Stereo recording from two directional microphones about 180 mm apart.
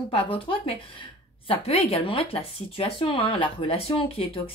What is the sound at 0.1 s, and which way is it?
Speech, 30° left (ahead or behind).